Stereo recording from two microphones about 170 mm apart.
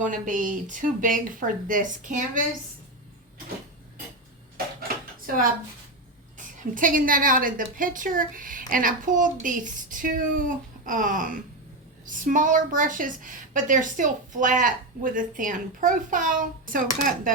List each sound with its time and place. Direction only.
0.0 s a woman's voice: 50° right (ahead or behind)
4.5 s dishes: 60° right (ahead or behind)
6.3 s a woman's voice: 50° right (ahead or behind)